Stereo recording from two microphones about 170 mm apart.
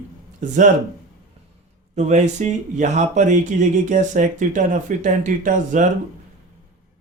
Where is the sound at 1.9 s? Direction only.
40° right (ahead or behind).